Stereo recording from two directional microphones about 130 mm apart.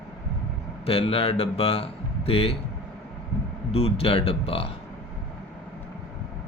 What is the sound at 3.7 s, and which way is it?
Mantra, 50° left (ahead or behind).